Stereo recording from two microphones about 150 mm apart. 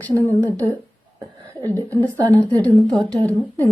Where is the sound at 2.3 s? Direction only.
10° left (ahead or behind).